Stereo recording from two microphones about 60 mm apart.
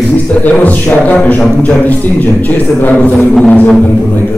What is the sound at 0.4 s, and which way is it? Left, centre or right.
A man's voice, left.